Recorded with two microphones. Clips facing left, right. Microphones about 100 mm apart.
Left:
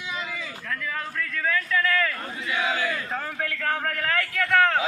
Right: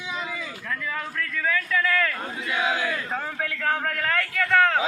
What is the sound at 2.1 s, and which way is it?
Chant, 15° right (ahead or behind).